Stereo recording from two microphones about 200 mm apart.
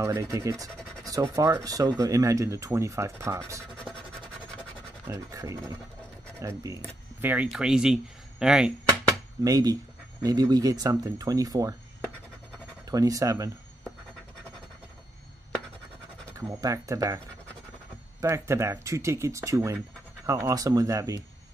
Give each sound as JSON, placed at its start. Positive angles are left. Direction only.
{"t": 0.0, "sound": "speech", "side_deg": -15}
{"t": 5.0, "sound": "speech", "side_deg": -15}
{"t": 9.4, "sound": "speech", "side_deg": -20}
{"t": 12.9, "sound": "speech", "side_deg": -15}
{"t": 16.3, "sound": "speech", "side_deg": -15}
{"t": 18.2, "sound": "speech", "side_deg": -15}